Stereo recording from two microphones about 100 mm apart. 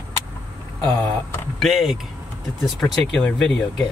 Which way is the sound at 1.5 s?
Centre (ahead or behind).